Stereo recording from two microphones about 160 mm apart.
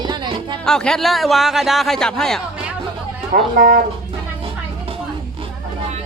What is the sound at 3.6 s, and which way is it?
Speech, 60° right (ahead or behind).